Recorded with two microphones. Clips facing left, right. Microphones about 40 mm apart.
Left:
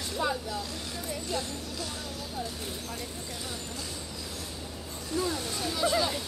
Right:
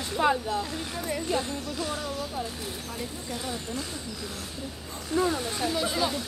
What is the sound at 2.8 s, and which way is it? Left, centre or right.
Speech, right.